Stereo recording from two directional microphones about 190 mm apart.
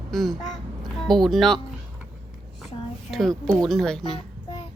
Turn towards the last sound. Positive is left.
turn(degrees=0)  # may be behind; listen again after turning